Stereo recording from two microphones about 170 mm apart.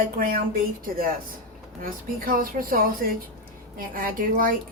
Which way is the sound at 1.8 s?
55° right (ahead or behind).